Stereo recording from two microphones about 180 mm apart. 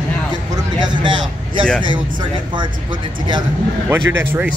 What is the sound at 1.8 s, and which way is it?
Speech, 25° right (ahead or behind).